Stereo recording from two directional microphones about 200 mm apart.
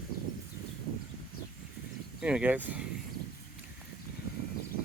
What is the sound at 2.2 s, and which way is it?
Speech, 5° right (ahead or behind).